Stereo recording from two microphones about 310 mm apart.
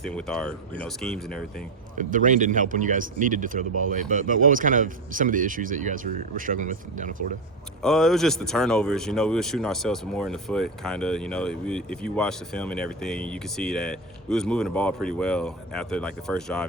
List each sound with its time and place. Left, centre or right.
0.0 s speech: centre
2.0 s speech: right
7.8 s speech: centre